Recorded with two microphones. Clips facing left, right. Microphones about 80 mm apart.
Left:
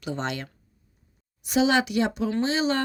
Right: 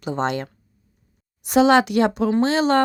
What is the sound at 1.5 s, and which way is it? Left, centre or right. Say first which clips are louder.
Speech: right 7 dB; right.